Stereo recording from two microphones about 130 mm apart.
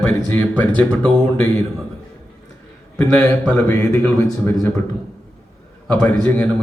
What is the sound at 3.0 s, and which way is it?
A man's voice, 15° left (ahead or behind).